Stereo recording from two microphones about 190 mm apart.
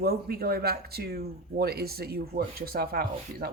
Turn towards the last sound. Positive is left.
turn(degrees=-50)  # may be behind; listen again after turning